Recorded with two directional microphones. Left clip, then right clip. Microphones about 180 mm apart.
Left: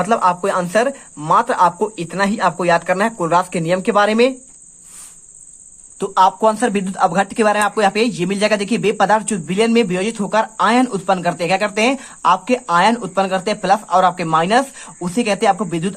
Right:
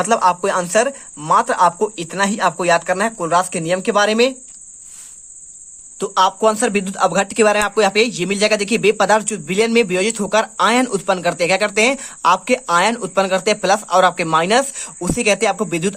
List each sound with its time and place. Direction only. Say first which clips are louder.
0.0 s speech: even; 30° right (ahead or behind)
6.0 s speech: left 2 dB; 20° right (ahead or behind)